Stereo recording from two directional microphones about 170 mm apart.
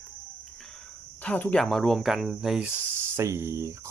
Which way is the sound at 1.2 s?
10° left (ahead or behind).